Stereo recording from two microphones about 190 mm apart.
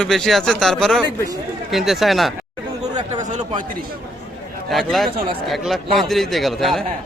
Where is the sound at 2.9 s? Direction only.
20° right (ahead or behind).